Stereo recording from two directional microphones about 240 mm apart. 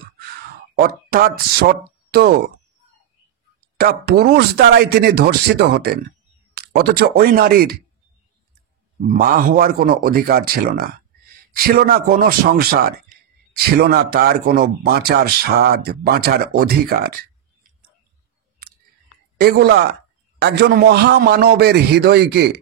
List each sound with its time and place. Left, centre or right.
0.7 s speech: right
3.6 s speech: right
9.0 s speech: right
19.4 s a man's voice: right